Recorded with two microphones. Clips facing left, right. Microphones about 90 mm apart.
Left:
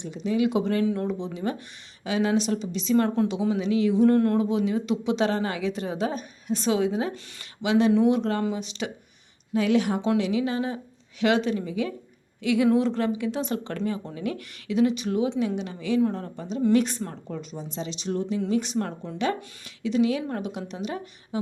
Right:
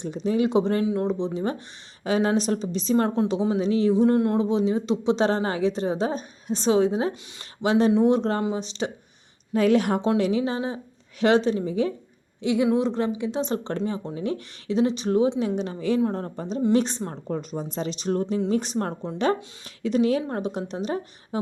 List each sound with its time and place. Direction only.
0.0 s speech: 40° right (ahead or behind)
2.0 s speech: 40° right (ahead or behind)
3.9 s speech: 20° right (ahead or behind)
9.5 s a woman's voice: 45° right (ahead or behind)
16.7 s speech: 30° right (ahead or behind)
17.2 s a woman's voice: 45° right (ahead or behind)